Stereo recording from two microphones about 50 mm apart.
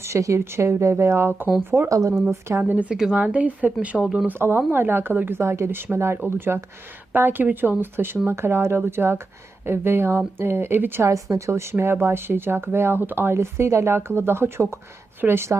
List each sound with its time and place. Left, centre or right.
0.0 s a woman's voice: right
1.7 s speech: centre
2.5 s speech: right
2.9 s speech: centre
3.2 s speech: right
4.0 s speech: centre
4.4 s speech: right
5.4 s a woman's voice: right
11.0 s a woman's voice: right